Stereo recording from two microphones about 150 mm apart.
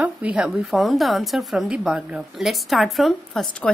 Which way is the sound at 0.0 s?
10° right (ahead or behind).